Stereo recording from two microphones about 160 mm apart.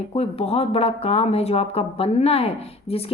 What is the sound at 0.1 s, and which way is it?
A woman's voice, 40° left (ahead or behind).